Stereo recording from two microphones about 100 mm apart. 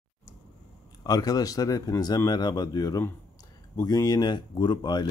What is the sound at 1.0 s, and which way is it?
Speech, 40° left (ahead or behind).